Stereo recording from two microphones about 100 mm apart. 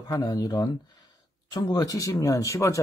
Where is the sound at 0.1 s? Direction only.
40° left (ahead or behind).